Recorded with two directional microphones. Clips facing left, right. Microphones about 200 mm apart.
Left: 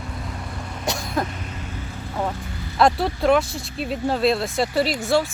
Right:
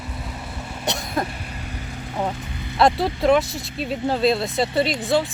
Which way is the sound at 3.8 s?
Centre (ahead or behind).